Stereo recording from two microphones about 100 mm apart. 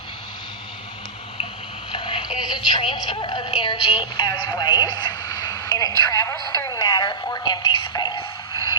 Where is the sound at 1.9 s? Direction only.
55° left (ahead or behind).